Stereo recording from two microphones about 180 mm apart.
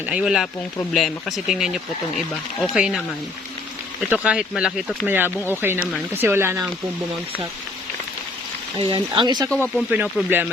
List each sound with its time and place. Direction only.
0.0 s speech: 5° right (ahead or behind)
4.1 s speech: 5° right (ahead or behind)
8.9 s speech: 25° right (ahead or behind)
9.5 s speech: 5° left (ahead or behind)
9.9 s speech: 10° right (ahead or behind)